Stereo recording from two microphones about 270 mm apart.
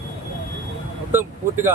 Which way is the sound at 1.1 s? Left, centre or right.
Centre.